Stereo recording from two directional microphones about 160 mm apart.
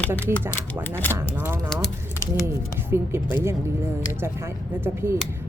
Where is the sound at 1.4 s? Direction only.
15° right (ahead or behind).